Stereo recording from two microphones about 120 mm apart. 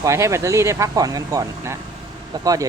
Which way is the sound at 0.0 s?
25° right (ahead or behind).